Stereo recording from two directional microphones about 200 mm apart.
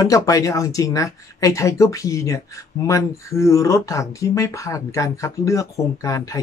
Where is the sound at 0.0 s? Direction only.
15° left (ahead or behind).